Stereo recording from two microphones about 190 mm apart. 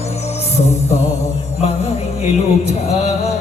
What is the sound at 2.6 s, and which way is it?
Music, 35° left (ahead or behind).